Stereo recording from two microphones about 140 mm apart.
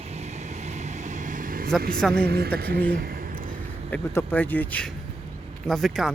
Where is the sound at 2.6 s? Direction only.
90° right.